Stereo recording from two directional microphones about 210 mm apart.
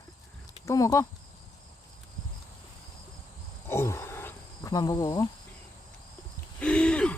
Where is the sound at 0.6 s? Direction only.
15° left (ahead or behind).